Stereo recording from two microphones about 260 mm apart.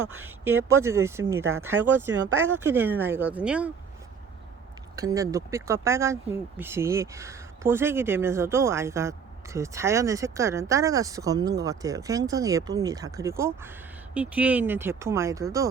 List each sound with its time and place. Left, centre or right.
0.1 s speech: centre
4.9 s speech: centre